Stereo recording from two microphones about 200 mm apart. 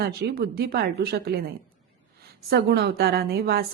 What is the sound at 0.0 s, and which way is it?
A woman's voice, 50° right (ahead or behind).